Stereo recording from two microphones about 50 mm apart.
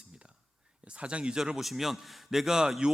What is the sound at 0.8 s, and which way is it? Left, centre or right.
Speech, right.